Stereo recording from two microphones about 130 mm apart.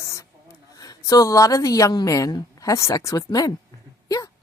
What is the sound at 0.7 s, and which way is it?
A woman's voice, 30° left (ahead or behind).